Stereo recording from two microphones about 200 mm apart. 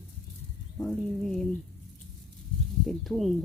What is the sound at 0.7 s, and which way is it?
Bird, 5° left (ahead or behind).